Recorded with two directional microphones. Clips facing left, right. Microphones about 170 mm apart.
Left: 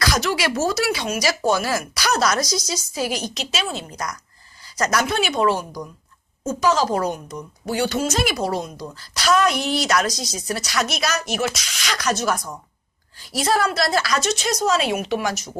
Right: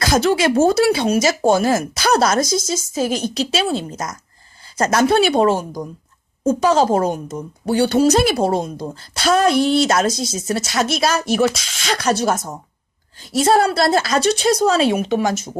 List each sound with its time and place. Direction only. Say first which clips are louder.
0.0 s speech: right 6 dB; 25° right (ahead or behind)
2.4 s a woman's voice: right 5 dB; 50° right (ahead or behind)
3.2 s speech: right 7 dB; 30° right (ahead or behind)
5.5 s a woman's voice: right 4 dB; 45° right (ahead or behind)
6.4 s speech: right 5 dB; 30° right (ahead or behind)